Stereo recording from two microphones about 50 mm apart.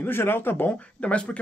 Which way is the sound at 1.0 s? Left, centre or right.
Left.